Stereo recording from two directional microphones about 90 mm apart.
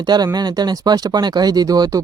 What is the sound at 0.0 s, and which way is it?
Speech, 50° right (ahead or behind).